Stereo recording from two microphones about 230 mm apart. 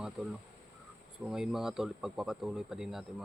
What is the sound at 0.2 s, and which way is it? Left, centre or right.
Speech, centre.